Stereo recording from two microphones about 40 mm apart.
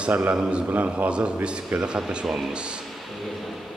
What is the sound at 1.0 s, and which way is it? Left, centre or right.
Speech, right.